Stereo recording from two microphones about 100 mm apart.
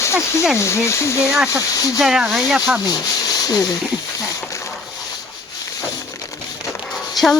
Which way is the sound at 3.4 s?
35° left (ahead or behind).